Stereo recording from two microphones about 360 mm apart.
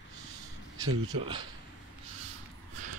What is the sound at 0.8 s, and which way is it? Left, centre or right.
Speech, right.